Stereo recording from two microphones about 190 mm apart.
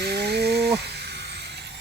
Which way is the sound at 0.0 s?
60° right (ahead or behind).